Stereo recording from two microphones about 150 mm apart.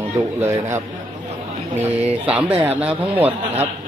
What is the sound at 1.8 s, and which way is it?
A man's voice, 10° right (ahead or behind).